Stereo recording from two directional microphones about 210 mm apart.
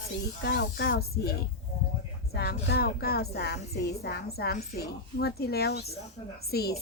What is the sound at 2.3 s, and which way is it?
A woman's voice, 50° left (ahead or behind).